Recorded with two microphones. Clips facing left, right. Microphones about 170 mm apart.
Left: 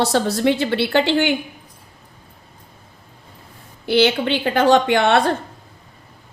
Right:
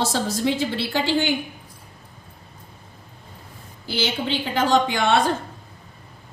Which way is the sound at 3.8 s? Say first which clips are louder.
Left 9 dB; 65° left (ahead or behind).